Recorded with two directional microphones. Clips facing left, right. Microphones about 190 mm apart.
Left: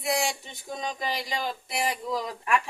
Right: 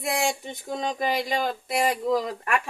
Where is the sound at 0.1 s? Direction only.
55° right (ahead or behind).